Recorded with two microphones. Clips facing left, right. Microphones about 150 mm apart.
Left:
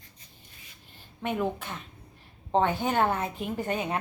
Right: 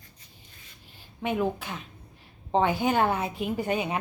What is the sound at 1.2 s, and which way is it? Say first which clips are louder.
A woman's voice: right 2 dB; 5° right (ahead or behind).